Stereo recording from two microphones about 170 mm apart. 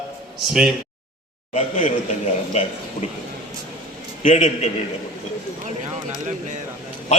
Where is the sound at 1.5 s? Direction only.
40° left (ahead or behind).